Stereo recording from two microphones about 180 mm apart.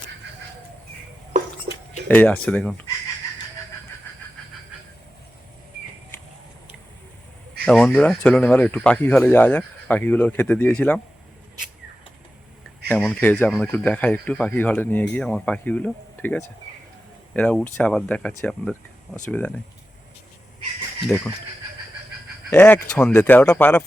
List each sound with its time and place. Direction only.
2.0 s speech: 10° left (ahead or behind)
7.6 s speech: 5° left (ahead or behind)
13.0 s speech: 5° left (ahead or behind)
21.1 s speech: 5° left (ahead or behind)
22.4 s speech: 10° left (ahead or behind)